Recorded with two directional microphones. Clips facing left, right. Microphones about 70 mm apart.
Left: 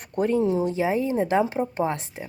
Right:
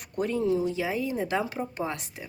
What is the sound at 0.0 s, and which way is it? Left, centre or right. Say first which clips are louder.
Speech: left 5 dB; left.